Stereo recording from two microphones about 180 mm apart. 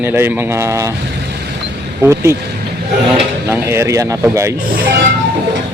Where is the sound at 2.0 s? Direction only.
15° right (ahead or behind).